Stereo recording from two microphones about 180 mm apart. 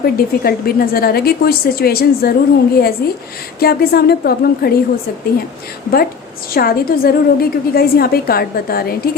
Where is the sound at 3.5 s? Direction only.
60° left (ahead or behind).